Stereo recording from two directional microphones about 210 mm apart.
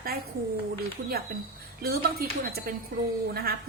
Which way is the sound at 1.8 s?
50° right (ahead or behind).